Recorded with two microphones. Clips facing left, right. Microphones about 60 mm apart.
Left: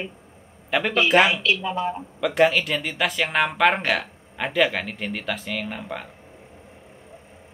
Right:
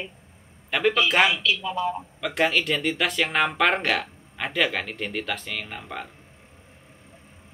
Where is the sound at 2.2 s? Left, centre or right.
Centre.